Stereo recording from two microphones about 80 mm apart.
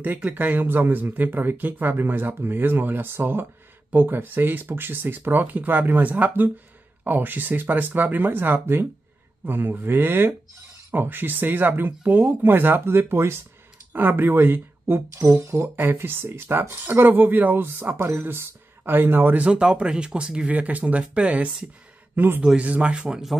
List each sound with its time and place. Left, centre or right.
0.0 s a man's voice: right
22.4 s speech: centre